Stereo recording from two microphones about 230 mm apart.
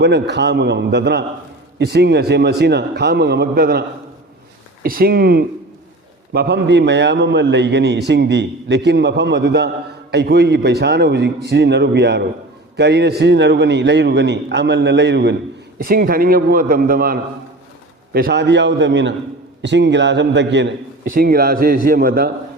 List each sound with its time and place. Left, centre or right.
0.0 s a man's voice: right
15.8 s a man's voice: right